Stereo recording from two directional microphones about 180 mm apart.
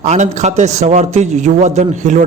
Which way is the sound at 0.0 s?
40° right (ahead or behind).